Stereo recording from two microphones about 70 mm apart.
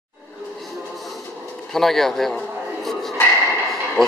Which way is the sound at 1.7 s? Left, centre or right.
Centre.